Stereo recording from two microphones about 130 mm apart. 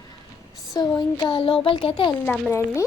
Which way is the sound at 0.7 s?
30° left (ahead or behind).